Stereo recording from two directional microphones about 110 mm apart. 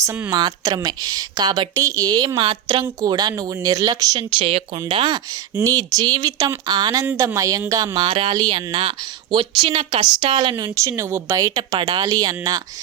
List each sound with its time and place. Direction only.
0.0 s speech: 25° right (ahead or behind)
0.3 s speech: 40° right (ahead or behind)
2.4 s speech: 50° right (ahead or behind)
3.0 s speech: 40° right (ahead or behind)
4.4 s speech: 55° right (ahead or behind); by 7.1 s 35° right (ahead or behind)
7.1 s speech: 25° right (ahead or behind); by 10.6 s 50° right (ahead or behind)
10.6 s speech: 30° right (ahead or behind)
11.7 s speech: 50° right (ahead or behind)